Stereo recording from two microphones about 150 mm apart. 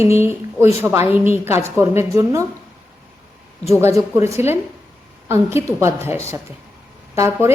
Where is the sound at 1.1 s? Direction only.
40° left (ahead or behind).